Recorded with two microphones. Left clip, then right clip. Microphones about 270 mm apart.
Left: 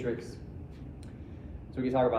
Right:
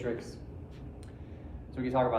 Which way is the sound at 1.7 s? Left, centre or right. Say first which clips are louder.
Left 1 dB; centre.